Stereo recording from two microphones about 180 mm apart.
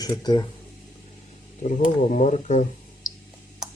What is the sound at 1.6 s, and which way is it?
Speech, 45° left (ahead or behind).